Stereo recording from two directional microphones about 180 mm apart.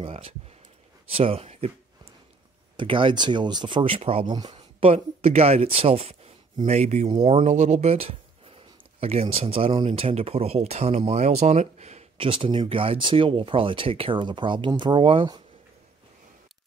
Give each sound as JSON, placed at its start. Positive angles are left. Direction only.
{"t": 0.0, "sound": "speech", "side_deg": -30}
{"t": 2.8, "sound": "speech", "side_deg": -25}